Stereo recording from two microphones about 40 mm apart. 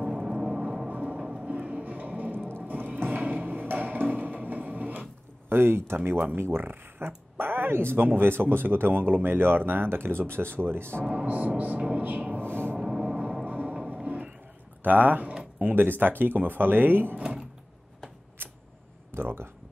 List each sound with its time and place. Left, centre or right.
0.1 s vehicle: centre
0.8 s music: right
3.4 s a sound: right
5.5 s speech: right
6.6 s speech: right
11.2 s speech: right
12.4 s a sound: right
12.7 s a sound: centre
13.5 s music: right
14.8 s speech: right
15.7 s speech: right
17.2 s speech: centre
18.4 s a sound: right
19.1 s speech: right